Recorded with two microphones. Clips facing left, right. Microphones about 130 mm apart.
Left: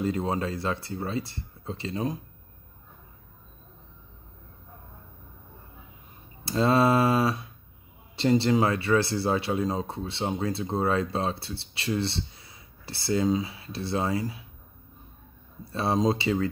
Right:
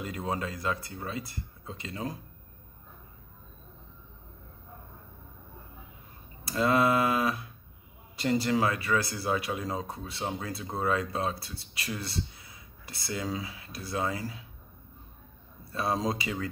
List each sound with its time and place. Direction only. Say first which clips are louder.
0.0 s speech: left 6 dB; 30° left (ahead or behind)
6.4 s speech: left 3 dB; 30° left (ahead or behind)
15.7 s speech: left 5 dB; 25° left (ahead or behind)